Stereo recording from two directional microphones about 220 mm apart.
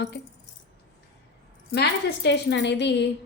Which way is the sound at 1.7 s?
50° left (ahead or behind).